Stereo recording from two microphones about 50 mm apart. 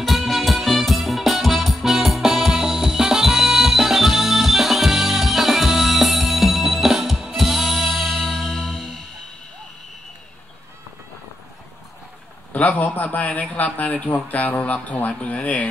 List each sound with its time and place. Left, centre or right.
0.0 s music: centre
12.5 s a man's voice: left